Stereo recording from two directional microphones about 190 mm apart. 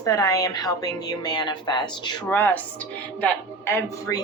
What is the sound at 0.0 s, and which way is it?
Speech, 20° left (ahead or behind).